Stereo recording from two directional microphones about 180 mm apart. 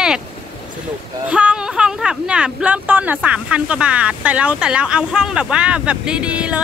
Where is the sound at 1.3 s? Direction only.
5° right (ahead or behind).